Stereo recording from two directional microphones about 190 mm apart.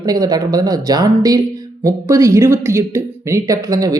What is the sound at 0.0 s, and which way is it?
Speech, 20° right (ahead or behind).